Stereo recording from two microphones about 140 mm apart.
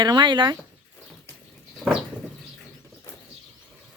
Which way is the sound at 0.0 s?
30° right (ahead or behind).